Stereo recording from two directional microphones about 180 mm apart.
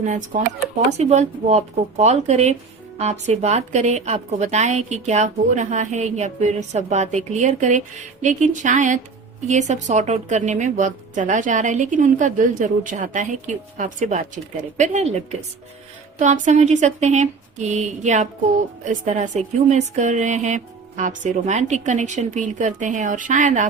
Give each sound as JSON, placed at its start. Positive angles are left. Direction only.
{"t": 0.0, "sound": "a woman's voice", "side_deg": -45}